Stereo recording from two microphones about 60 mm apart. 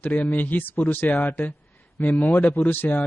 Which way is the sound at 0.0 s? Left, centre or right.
Left.